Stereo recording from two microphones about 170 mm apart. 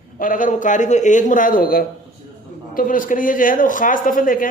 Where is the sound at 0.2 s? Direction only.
55° left (ahead or behind).